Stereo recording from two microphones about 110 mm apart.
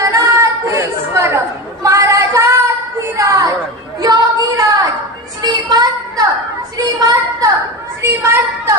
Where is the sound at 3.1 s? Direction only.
30° right (ahead or behind).